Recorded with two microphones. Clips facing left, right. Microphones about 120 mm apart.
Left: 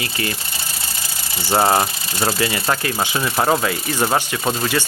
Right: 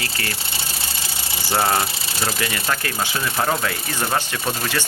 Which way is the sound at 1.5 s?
25° left (ahead or behind).